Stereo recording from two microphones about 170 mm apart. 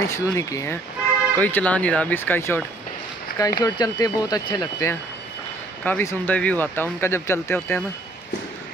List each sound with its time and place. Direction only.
0.0 s speech: 15° left (ahead or behind)